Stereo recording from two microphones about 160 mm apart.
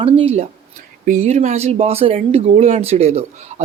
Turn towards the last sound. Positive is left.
turn(degrees=-40)  # may be behind; listen again after turning